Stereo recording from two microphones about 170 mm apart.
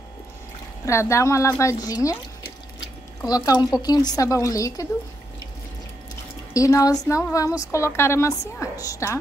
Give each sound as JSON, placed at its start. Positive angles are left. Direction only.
{"t": 0.8, "sound": "a woman's voice", "side_deg": 15}
{"t": 3.3, "sound": "a woman's voice", "side_deg": 25}
{"t": 6.5, "sound": "a woman's voice", "side_deg": 20}